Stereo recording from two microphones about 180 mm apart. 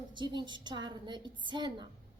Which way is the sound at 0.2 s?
25° right (ahead or behind).